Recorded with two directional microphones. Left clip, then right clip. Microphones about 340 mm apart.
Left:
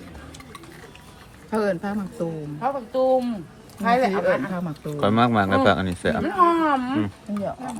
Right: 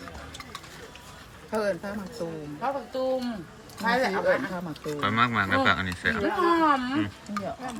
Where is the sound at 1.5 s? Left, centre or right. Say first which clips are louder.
Left 4 dB; left.